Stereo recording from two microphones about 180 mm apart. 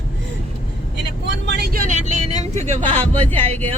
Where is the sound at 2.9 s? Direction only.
10° left (ahead or behind).